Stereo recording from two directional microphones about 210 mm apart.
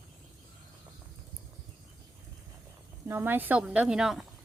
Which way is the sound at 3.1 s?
10° right (ahead or behind).